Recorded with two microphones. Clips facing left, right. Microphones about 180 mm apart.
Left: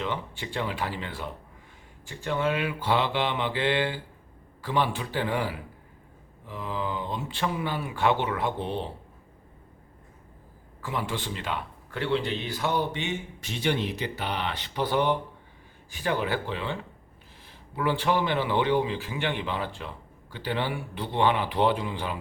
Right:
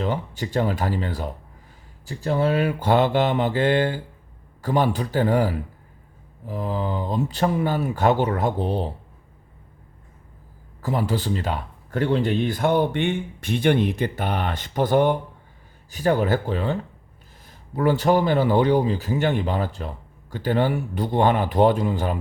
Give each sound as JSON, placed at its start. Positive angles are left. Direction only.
{"t": 0.0, "sound": "a man's voice", "side_deg": -40}
{"t": 10.8, "sound": "a man's voice", "side_deg": -40}
{"t": 17.7, "sound": "a man's voice", "side_deg": -40}